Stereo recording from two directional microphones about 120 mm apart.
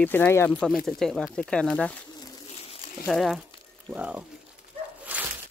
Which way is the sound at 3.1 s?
Centre (ahead or behind).